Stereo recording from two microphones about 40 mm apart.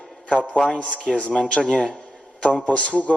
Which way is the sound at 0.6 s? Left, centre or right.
Left.